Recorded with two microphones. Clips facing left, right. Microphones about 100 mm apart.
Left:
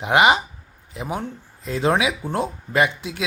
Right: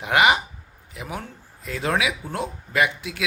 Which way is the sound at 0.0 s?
25° left (ahead or behind).